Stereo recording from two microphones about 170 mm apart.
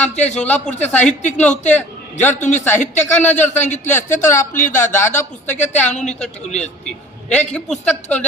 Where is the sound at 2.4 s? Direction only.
45° left (ahead or behind).